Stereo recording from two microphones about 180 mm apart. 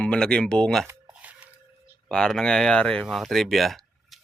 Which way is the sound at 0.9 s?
10° right (ahead or behind).